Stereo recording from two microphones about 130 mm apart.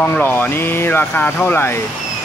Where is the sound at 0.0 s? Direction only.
15° left (ahead or behind).